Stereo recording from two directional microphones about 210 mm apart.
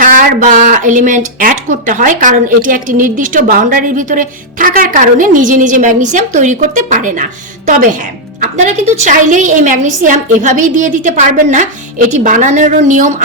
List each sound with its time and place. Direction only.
0.0 s speech: 40° right (ahead or behind)
8.4 s speech: 35° right (ahead or behind)